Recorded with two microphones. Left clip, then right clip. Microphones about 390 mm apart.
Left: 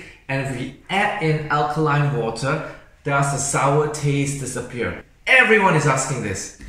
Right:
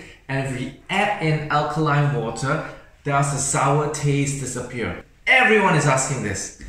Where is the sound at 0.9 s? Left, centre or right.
Centre.